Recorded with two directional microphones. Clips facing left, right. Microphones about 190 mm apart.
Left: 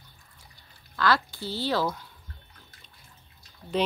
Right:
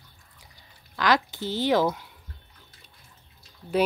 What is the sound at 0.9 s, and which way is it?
Speech, 15° right (ahead or behind).